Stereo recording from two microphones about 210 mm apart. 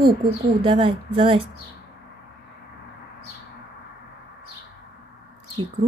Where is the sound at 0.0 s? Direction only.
25° right (ahead or behind).